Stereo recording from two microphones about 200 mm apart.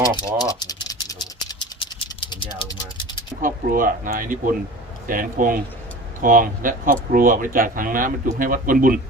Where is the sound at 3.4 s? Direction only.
45° right (ahead or behind).